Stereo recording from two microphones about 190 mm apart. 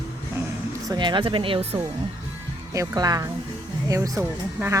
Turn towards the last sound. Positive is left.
turn(degrees=-15)  # may be behind; listen again after turning